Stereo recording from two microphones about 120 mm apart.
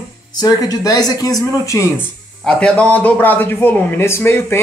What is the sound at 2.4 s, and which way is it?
A man's voice, 10° left (ahead or behind).